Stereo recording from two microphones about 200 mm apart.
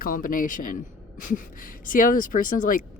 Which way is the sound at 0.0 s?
45° left (ahead or behind).